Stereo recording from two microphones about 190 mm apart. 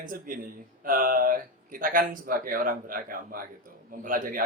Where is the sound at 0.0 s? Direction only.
45° right (ahead or behind).